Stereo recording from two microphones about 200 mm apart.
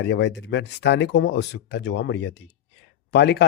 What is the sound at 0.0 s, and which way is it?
Speech, 60° left (ahead or behind).